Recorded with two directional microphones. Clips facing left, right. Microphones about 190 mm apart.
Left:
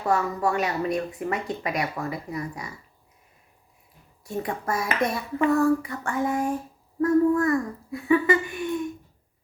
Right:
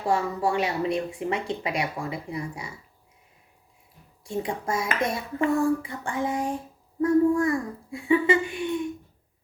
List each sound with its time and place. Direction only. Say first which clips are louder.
0.0 s speech: left 1 dB; 30° right (ahead or behind)
4.3 s speech: even; 25° right (ahead or behind)